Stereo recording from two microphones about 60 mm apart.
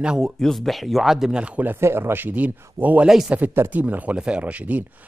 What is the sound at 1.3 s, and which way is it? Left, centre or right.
Speech, right.